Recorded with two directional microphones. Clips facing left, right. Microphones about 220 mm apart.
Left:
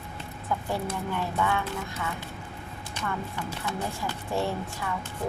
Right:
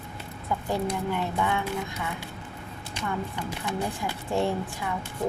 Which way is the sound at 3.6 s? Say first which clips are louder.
Right 3 dB; 15° right (ahead or behind).